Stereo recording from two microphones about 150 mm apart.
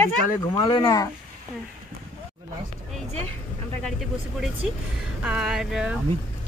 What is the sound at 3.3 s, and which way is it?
Vehicle, 15° left (ahead or behind).